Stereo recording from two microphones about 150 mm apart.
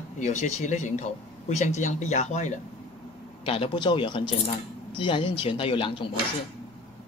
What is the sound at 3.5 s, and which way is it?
Speech, 35° left (ahead or behind).